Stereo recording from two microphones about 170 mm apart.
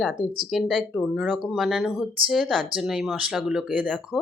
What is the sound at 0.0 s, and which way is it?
Speech, 5° left (ahead or behind).